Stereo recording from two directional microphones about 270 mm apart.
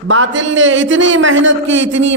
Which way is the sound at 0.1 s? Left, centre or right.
Right.